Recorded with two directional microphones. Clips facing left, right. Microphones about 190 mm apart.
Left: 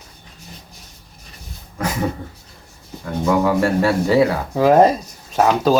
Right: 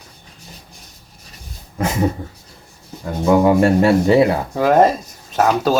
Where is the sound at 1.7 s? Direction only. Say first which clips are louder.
Right 3 dB; 25° right (ahead or behind).